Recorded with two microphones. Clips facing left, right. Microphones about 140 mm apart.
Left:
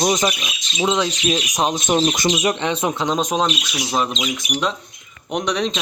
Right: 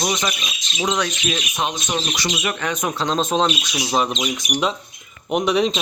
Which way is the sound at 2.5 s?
25° left (ahead or behind).